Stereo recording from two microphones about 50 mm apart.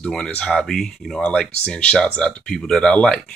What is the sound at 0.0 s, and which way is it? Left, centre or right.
Speech, centre.